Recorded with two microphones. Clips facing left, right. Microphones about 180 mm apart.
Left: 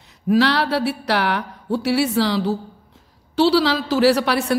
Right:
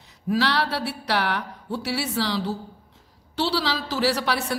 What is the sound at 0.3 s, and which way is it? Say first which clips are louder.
A woman's voice: left 6 dB; 60° left (ahead or behind).